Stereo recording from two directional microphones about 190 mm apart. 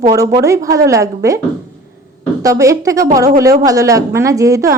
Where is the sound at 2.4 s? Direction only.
15° right (ahead or behind).